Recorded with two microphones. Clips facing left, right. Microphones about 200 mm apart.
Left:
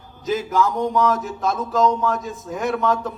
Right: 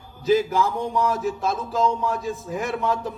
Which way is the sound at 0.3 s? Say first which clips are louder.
Right 1 dB; 30° right (ahead or behind).